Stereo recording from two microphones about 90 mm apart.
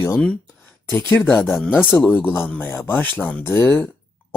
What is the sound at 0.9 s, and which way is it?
Speech, 20° left (ahead or behind).